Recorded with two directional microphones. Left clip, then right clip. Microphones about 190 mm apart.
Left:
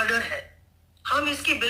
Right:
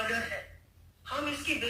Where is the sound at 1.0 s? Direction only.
30° left (ahead or behind).